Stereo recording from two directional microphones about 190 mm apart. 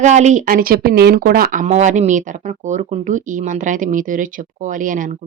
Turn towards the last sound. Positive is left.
turn(degrees=-45)  # may be behind; listen again after turning